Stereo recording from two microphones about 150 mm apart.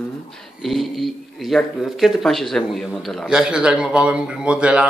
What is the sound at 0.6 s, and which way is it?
A man's voice, centre (ahead or behind).